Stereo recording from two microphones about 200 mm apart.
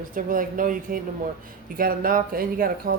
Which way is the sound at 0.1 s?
45° right (ahead or behind).